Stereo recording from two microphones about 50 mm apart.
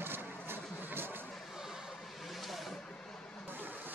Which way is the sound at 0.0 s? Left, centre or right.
Right.